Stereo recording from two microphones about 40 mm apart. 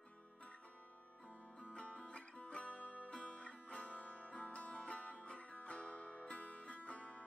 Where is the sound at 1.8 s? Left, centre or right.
Left.